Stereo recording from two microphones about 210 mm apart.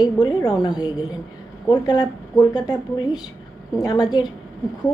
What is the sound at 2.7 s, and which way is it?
A woman's voice, 20° left (ahead or behind).